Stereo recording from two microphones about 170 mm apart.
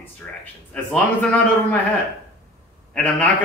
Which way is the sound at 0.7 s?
5° left (ahead or behind).